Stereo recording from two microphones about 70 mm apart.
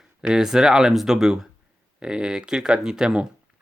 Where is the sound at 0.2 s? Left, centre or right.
Centre.